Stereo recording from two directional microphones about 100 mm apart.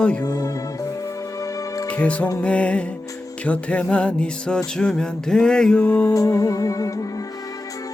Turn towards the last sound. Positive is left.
turn(degrees=35)  # may be behind; listen again after turning